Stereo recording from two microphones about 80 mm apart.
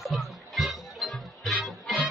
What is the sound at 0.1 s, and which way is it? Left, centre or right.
Music, centre.